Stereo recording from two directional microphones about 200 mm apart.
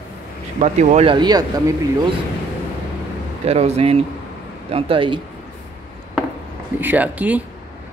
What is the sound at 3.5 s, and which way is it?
Speech, 30° right (ahead or behind).